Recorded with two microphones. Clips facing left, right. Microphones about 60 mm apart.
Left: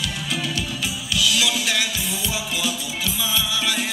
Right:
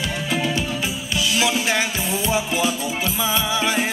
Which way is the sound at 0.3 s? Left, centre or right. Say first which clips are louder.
Right 5 dB; right.